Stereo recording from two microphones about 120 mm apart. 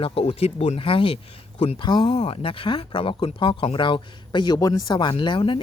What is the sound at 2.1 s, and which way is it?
Speech, 55° left (ahead or behind).